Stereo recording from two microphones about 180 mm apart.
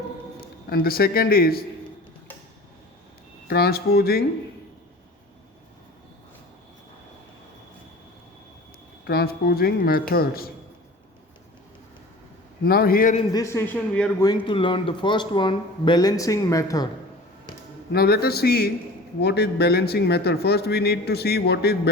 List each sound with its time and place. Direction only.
0.7 s a man's voice: 55° left (ahead or behind)
3.5 s a man's voice: 60° left (ahead or behind)
9.0 s a man's voice: 60° left (ahead or behind)
12.6 s a man's voice: 55° left (ahead or behind)
13.3 s speech: 15° left (ahead or behind)
14.2 s speech: 25° left (ahead or behind)
17.9 s a man's voice: 60° left (ahead or behind)